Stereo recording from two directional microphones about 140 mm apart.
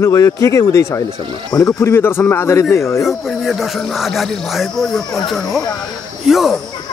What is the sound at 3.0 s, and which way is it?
Speech, centre (ahead or behind).